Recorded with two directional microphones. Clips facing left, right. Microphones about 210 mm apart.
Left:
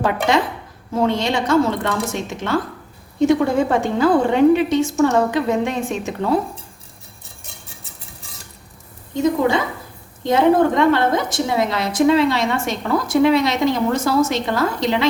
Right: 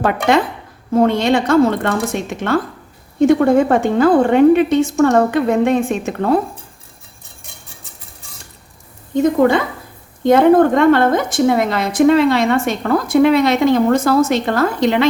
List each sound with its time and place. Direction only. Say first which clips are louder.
0.9 s a woman's voice: right 5 dB; 55° right (ahead or behind)
10.2 s a woman's voice: right 5 dB; 55° right (ahead or behind)